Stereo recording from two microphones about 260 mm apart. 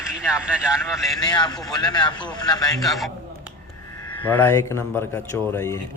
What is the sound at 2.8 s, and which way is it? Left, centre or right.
Speech, centre.